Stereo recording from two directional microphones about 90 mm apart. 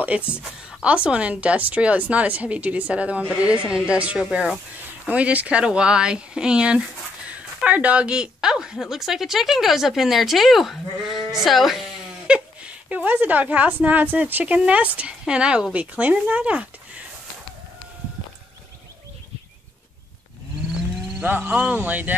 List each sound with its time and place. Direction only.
0.0 s a woman's voice: 15° right (ahead or behind)
12.3 s a sound: 10° right (ahead or behind)
12.9 s a woman's voice: 20° right (ahead or behind)
21.2 s speech: 20° right (ahead or behind)